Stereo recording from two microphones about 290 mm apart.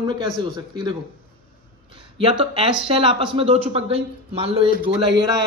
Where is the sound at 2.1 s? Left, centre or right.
Centre.